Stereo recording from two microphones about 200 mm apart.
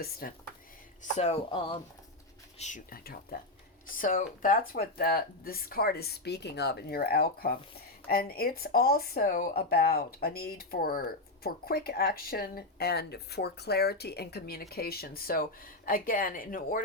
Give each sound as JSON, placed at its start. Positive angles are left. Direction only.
{"t": 0.2, "sound": "speech", "side_deg": 45}
{"t": 1.1, "sound": "speech", "side_deg": 35}
{"t": 2.6, "sound": "speech", "side_deg": 40}